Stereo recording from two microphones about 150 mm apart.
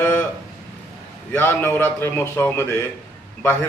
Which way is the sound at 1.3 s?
15° left (ahead or behind).